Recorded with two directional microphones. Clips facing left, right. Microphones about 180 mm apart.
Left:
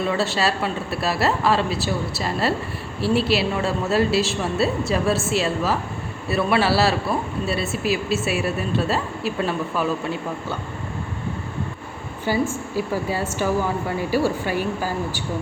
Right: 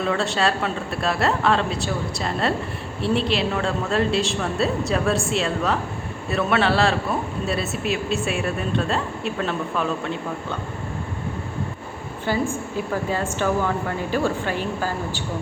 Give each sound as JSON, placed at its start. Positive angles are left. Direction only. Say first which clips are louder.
{"t": 0.0, "sound": "a man's voice", "louder": "even", "side_deg": 5}
{"t": 12.2, "sound": "a woman's voice", "louder": "left 1 dB", "side_deg": 10}